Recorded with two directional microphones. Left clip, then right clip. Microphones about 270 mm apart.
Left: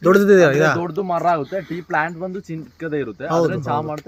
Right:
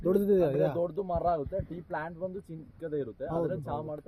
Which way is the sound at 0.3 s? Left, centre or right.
Centre.